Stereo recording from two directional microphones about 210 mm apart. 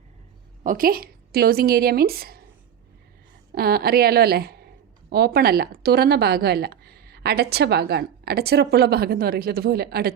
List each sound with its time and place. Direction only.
0.6 s a woman's voice: 40° right (ahead or behind)
3.5 s a woman's voice: 45° right (ahead or behind)